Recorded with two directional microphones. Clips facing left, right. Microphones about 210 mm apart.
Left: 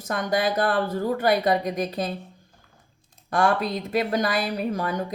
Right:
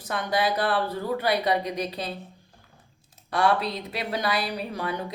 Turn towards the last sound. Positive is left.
turn(degrees=45)  # may be behind; listen again after turning